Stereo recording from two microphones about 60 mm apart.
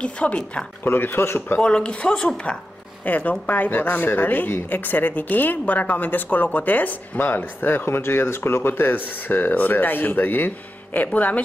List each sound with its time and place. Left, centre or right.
0.0 s speech: centre
0.8 s speech: left
1.6 s speech: centre
3.1 s speech: left